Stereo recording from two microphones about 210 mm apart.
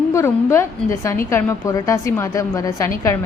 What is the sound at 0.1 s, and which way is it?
A woman's voice, 15° left (ahead or behind).